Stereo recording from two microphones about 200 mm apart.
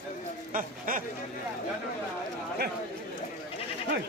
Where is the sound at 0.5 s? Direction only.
45° right (ahead or behind).